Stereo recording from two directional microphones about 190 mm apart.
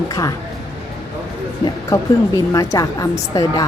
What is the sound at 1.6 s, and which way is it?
A woman's voice, 15° left (ahead or behind).